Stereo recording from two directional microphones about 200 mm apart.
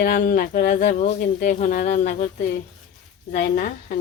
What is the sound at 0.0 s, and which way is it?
Speech, 45° left (ahead or behind).